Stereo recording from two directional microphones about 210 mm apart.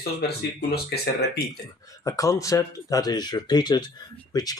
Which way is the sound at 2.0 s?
15° left (ahead or behind).